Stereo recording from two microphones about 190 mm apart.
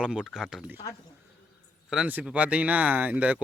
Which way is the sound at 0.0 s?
5° right (ahead or behind).